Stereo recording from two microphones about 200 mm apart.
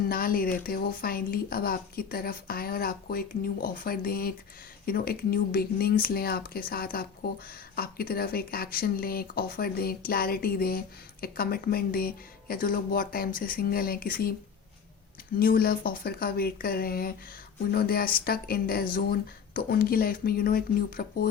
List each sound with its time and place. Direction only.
0.1 s speech: 45° left (ahead or behind)
15.4 s speech: 45° left (ahead or behind)